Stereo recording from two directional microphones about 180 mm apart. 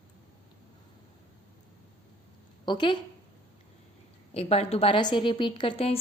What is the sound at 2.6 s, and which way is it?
Speech, 25° left (ahead or behind).